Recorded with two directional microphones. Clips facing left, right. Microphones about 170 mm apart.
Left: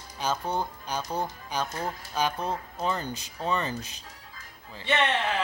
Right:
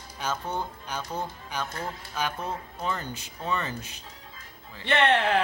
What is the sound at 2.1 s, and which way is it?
Speech, 35° left (ahead or behind).